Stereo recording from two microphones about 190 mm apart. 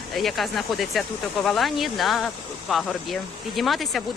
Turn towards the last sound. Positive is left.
turn(degrees=0)  # may be behind; listen again after turning